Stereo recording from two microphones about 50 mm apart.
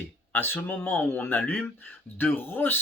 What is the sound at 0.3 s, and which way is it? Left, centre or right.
Speech, left.